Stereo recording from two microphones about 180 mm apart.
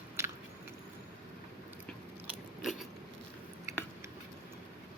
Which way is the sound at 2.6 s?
Centre (ahead or behind).